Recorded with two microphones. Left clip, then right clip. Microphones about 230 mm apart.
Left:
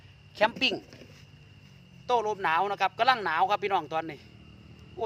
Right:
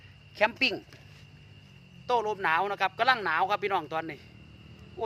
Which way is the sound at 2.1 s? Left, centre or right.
Centre.